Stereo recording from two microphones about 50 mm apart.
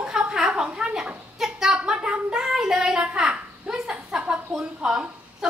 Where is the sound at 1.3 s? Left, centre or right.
Centre.